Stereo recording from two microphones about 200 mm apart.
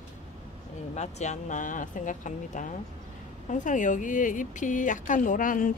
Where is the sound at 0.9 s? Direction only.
35° left (ahead or behind).